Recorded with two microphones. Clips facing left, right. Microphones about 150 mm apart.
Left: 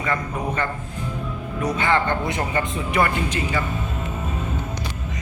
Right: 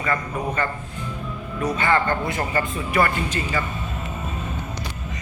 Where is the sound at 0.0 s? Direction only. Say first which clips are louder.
Even; 15° left (ahead or behind).